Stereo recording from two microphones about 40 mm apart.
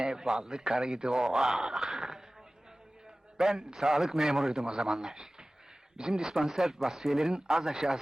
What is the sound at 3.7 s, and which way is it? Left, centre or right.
Speech, centre.